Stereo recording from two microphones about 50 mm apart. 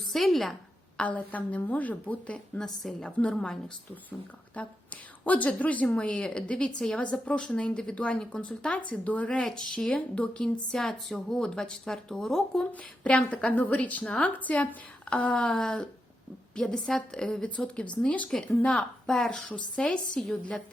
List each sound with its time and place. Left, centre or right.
0.1 s a woman's voice: centre
0.9 s speech: left
2.6 s speech: centre
3.0 s speech: centre; by 6.0 s left
6.0 s speech: left
9.4 s speech: centre
10.2 s speech: left
10.7 s speech: centre
13.1 s speech: left
15.3 s speech: centre
18.3 s speech: centre
19.5 s speech: left
20.2 s speech: centre